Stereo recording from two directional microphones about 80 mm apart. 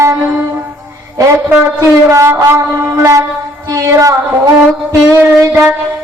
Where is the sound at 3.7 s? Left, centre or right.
Right.